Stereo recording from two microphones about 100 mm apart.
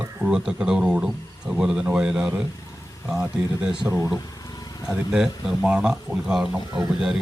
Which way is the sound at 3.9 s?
20° right (ahead or behind).